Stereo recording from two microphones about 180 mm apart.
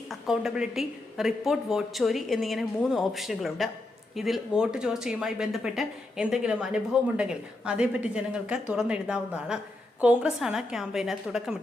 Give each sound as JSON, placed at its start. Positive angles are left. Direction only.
{"t": 0.1, "sound": "a woman's voice", "side_deg": -5}